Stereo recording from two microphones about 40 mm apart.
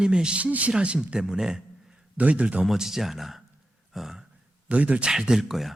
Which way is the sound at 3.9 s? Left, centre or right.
Centre.